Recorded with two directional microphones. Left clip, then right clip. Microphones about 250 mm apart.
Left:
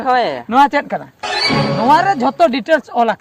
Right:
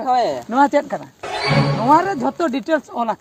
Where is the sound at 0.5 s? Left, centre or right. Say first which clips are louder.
Left 5 dB; left.